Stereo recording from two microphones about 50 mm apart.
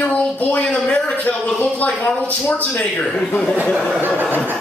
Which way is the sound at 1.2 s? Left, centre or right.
Left.